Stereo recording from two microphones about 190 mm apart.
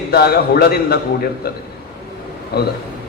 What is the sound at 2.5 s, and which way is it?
Speech, 55° left (ahead or behind).